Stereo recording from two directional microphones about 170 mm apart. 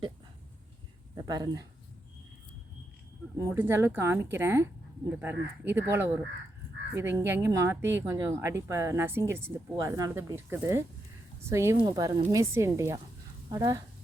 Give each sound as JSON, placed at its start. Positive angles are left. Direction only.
{"t": 1.1, "sound": "speech", "side_deg": -20}
{"t": 3.3, "sound": "speech", "side_deg": -15}
{"t": 7.8, "sound": "speech", "side_deg": -90}
{"t": 8.0, "sound": "speech", "side_deg": -15}